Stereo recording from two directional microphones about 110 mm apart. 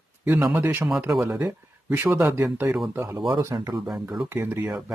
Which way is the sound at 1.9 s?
20° right (ahead or behind).